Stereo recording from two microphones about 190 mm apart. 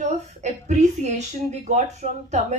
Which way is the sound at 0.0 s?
35° right (ahead or behind).